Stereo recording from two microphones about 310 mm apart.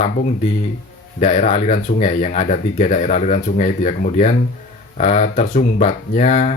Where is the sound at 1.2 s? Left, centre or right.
Left.